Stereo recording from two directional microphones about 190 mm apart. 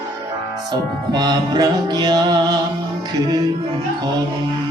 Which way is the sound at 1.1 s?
20° right (ahead or behind).